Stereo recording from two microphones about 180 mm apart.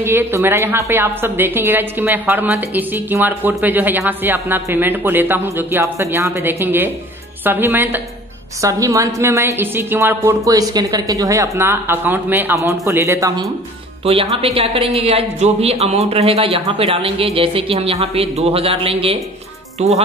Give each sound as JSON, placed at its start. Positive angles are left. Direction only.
{"t": 0.0, "sound": "a woman's voice", "side_deg": -15}
{"t": 14.0, "sound": "speech", "side_deg": -35}